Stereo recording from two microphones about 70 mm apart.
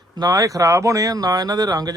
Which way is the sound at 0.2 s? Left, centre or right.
Right.